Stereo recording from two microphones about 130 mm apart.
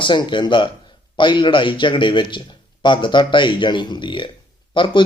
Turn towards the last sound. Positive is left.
turn(degrees=40)  # may be behind; listen again after turning